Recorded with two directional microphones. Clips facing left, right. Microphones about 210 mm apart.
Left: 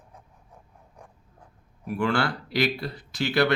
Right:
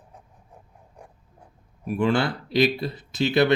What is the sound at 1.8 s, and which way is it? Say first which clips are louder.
Speech: right 3 dB; 20° right (ahead or behind).